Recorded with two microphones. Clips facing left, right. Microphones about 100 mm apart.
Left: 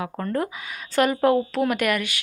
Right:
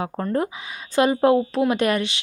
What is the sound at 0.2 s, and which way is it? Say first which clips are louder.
A woman's voice: right 2 dB; 25° right (ahead or behind).